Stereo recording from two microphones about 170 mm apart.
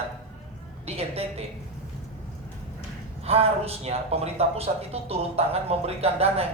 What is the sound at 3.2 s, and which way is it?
A man's voice, 35° right (ahead or behind).